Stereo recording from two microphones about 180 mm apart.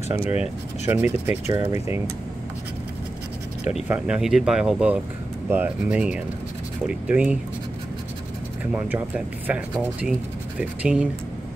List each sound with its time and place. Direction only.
0.1 s speech: 30° left (ahead or behind)
0.4 s speech: 10° right (ahead or behind)
3.9 s speech: 5° right (ahead or behind)
8.7 s speech: 10° right (ahead or behind)